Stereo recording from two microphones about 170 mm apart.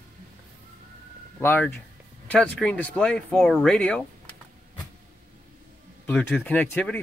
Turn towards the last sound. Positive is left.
turn(degrees=5)  # may be behind; listen again after turning